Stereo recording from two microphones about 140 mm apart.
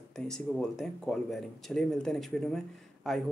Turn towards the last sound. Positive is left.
turn(degrees=0)  # may be behind; listen again after turning